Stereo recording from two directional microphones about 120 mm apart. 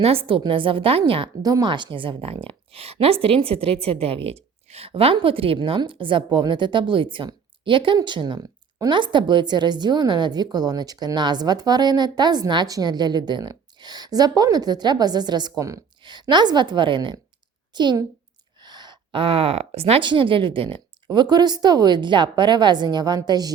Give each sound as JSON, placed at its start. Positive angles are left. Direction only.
{"t": 0.0, "sound": "a woman's voice", "side_deg": -55}
{"t": 1.4, "sound": "a woman's voice", "side_deg": -30}
{"t": 16.0, "sound": "a woman's voice", "side_deg": -40}
{"t": 20.1, "sound": "a woman's voice", "side_deg": -45}